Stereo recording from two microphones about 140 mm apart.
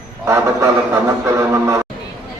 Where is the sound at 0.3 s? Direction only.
20° right (ahead or behind).